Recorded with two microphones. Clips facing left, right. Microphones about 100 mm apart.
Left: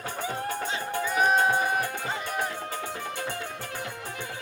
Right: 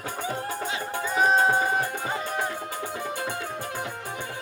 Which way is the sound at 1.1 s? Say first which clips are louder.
Right 2 dB; 30° right (ahead or behind).